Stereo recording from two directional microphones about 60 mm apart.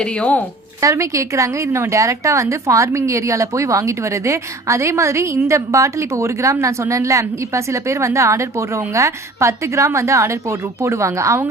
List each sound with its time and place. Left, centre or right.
0.0 s speech: centre
0.8 s a woman's voice: right